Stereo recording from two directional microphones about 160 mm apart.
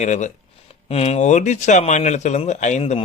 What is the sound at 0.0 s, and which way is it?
Speech, 50° left (ahead or behind).